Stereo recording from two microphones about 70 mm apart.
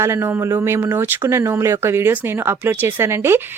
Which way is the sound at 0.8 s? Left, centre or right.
Right.